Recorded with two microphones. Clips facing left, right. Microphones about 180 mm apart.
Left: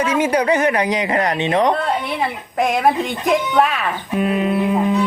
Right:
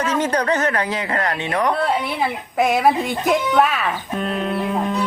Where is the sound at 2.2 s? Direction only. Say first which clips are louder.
Right 2 dB; 5° right (ahead or behind).